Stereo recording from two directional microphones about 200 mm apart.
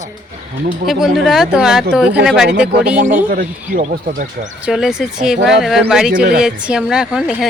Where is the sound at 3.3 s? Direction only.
45° right (ahead or behind).